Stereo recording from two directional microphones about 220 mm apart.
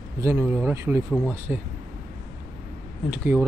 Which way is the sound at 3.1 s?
10° right (ahead or behind).